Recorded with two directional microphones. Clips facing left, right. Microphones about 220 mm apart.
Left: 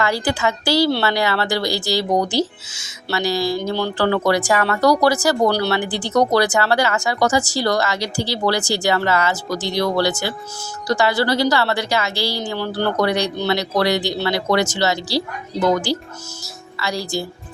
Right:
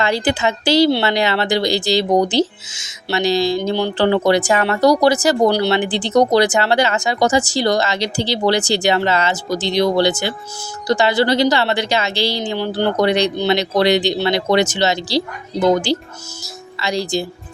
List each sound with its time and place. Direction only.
0.0 s speech: 20° right (ahead or behind)